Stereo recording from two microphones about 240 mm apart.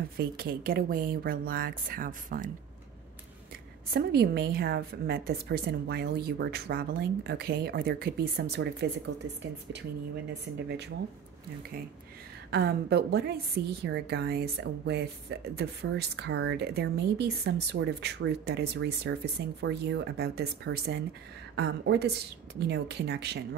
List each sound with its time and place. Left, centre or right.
0.2 s a woman's voice: right
3.9 s a woman's voice: right
12.4 s a woman's voice: right